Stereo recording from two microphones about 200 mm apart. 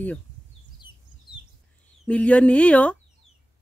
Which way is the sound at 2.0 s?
5° left (ahead or behind).